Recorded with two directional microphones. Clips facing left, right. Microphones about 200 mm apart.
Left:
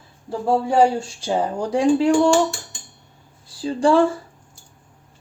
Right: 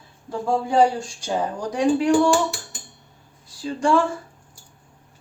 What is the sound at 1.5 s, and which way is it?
Speech, 30° left (ahead or behind).